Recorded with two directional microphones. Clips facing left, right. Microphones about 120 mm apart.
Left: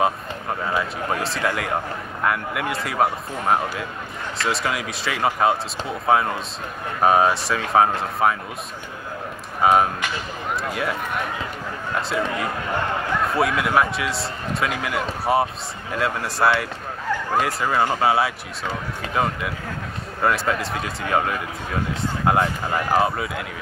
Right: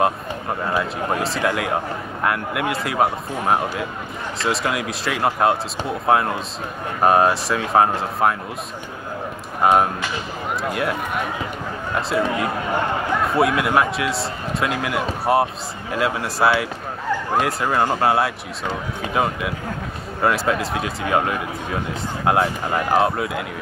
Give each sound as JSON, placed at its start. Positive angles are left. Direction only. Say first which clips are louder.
{"t": 0.0, "sound": "speech", "louder": "right 2 dB", "side_deg": 0}
{"t": 9.6, "sound": "speech", "louder": "right 1 dB", "side_deg": 0}
{"t": 13.3, "sound": "speech", "louder": "right 3 dB", "side_deg": 0}